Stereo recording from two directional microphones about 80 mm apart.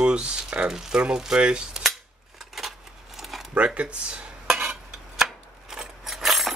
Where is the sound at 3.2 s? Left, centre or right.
Centre.